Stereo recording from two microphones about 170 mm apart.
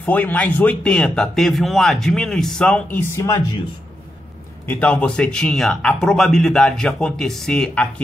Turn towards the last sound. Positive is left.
turn(degrees=5)  # may be behind; listen again after turning